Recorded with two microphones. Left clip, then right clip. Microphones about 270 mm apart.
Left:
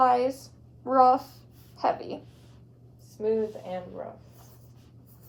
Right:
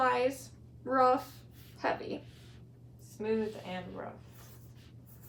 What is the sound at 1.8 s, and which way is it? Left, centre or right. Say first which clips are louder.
Speech: left 6 dB; centre.